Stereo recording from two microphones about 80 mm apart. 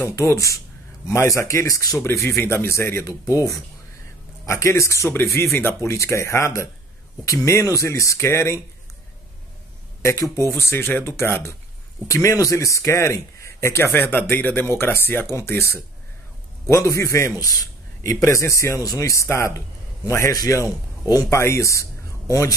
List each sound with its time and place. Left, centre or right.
0.0 s speech: left
4.5 s speech: left
10.2 s speech: left
12.1 s speech: left
20.6 s a man's voice: right
21.2 s speech: left